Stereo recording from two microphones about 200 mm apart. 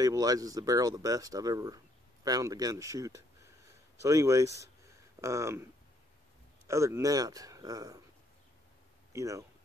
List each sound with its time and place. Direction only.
0.0 s speech: 20° right (ahead or behind)
6.7 s speech: 15° right (ahead or behind)
9.1 s speech: 15° right (ahead or behind)